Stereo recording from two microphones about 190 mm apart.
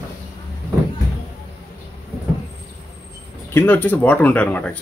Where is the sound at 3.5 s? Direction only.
10° left (ahead or behind).